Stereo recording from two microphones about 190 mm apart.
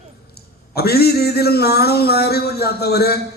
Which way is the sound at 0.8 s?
55° left (ahead or behind).